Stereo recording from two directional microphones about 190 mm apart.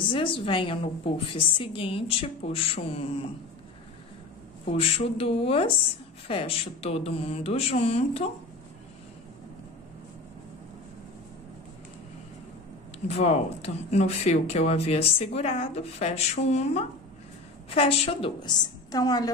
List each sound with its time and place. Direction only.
0.1 s a woman's voice: 25° left (ahead or behind)
4.6 s speech: 30° left (ahead or behind)
13.1 s a woman's voice: 35° left (ahead or behind)